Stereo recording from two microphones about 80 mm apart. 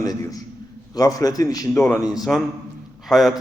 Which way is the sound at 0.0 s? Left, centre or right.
Left.